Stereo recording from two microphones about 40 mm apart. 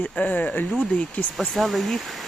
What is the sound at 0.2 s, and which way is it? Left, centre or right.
Speech, left.